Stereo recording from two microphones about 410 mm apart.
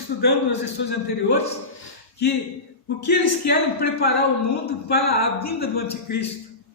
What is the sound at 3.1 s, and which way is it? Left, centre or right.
A man's voice, left.